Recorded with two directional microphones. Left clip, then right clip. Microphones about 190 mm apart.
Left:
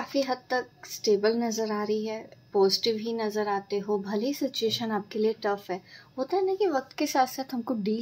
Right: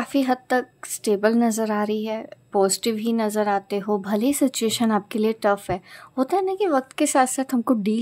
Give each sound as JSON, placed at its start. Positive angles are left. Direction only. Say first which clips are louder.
{"t": 0.0, "sound": "a woman's voice", "louder": "right 6 dB", "side_deg": -45}